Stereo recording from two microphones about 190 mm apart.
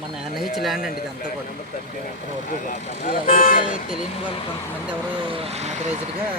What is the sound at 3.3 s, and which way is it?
Speech, 50° left (ahead or behind).